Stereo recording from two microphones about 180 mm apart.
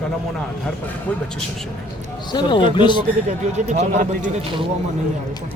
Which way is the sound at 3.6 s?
40° right (ahead or behind).